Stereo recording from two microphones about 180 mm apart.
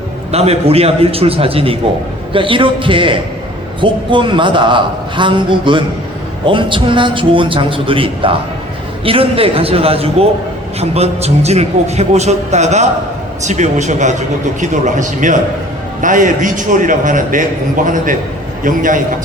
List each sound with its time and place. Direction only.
0.3 s a man's voice: 35° right (ahead or behind)